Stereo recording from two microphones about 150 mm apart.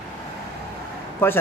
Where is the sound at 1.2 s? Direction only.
15° left (ahead or behind).